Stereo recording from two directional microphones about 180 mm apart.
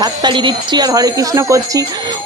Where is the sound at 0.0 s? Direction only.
25° right (ahead or behind).